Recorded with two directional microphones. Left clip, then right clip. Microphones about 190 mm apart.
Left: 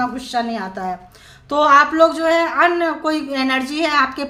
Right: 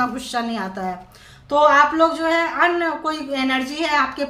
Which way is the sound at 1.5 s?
30° left (ahead or behind).